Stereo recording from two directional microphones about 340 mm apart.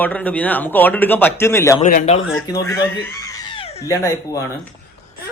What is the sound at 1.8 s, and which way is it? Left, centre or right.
Speech, left.